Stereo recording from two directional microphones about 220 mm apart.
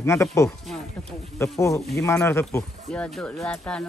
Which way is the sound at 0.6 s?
Centre (ahead or behind).